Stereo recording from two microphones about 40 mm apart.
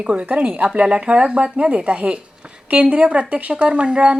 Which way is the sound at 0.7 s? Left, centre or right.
Right.